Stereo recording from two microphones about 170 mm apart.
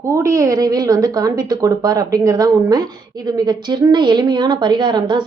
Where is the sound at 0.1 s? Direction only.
15° right (ahead or behind).